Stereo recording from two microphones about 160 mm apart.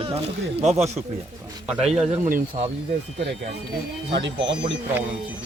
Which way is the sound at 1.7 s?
Centre (ahead or behind).